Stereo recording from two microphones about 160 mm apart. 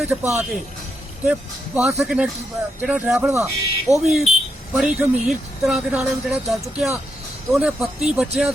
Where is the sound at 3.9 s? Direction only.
20° left (ahead or behind).